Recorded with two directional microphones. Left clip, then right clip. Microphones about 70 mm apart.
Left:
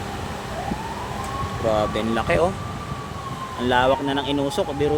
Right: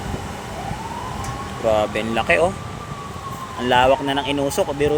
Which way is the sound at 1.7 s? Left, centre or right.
Left.